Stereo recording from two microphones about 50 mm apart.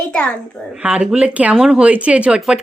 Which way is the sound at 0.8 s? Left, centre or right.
Right.